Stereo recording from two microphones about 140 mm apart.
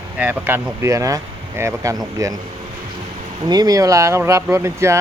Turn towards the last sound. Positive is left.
turn(degrees=-20)  # may be behind; listen again after turning